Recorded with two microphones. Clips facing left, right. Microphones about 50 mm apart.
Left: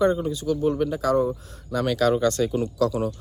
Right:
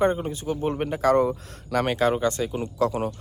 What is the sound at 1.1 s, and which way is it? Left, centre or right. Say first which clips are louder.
Speech: right 1 dB; right.